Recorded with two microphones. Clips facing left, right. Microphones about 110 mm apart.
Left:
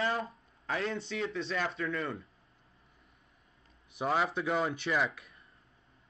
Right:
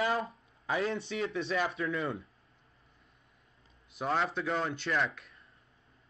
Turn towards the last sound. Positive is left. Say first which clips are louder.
# left 1 dB
turn(degrees=5)  # may be behind; listen again after turning